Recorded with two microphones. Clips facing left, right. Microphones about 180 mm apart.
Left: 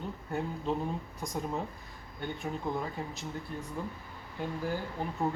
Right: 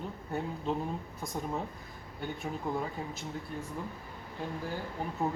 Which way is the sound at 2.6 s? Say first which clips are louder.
Right 1 dB; 5° right (ahead or behind).